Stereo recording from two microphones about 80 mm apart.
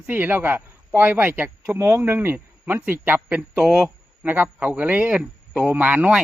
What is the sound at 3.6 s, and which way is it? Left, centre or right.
Speech, centre.